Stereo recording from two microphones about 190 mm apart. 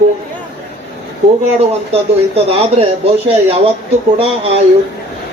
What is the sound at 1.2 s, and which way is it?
Speech, 35° right (ahead or behind).